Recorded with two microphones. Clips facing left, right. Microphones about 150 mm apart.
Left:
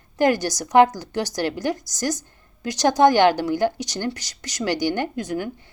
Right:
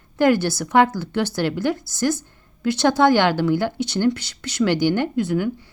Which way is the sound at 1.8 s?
40° left (ahead or behind).